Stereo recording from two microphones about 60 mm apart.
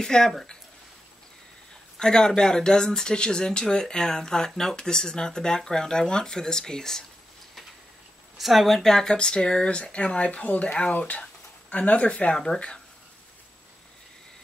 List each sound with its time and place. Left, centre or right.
0.0 s speech: centre
2.0 s speech: centre
8.4 s speech: centre